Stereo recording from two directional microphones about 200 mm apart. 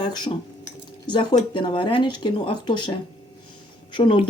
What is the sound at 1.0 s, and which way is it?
Speech, 20° left (ahead or behind).